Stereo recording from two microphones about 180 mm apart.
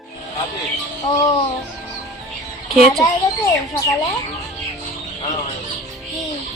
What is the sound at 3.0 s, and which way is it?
Speech, 20° left (ahead or behind).